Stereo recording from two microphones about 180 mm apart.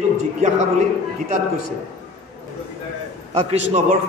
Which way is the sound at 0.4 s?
40° right (ahead or behind).